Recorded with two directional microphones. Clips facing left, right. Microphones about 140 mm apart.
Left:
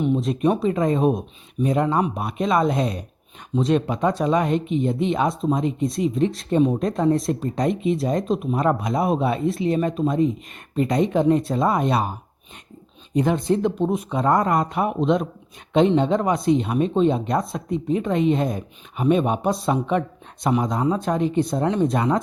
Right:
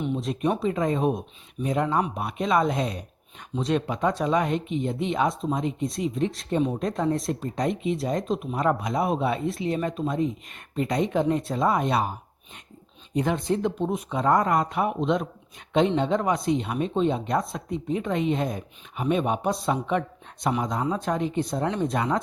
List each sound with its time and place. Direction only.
0.0 s speech: 30° left (ahead or behind)
13.1 s speech: 35° left (ahead or behind)